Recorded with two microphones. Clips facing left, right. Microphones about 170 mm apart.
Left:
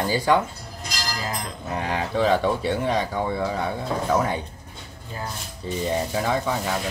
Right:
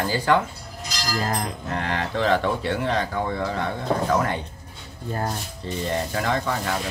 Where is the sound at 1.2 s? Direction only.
50° right (ahead or behind).